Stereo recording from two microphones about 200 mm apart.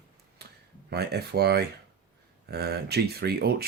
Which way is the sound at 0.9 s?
55° right (ahead or behind).